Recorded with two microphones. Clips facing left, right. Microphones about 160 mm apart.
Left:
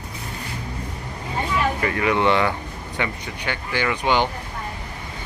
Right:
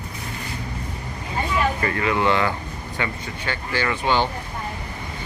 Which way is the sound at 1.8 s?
15° left (ahead or behind).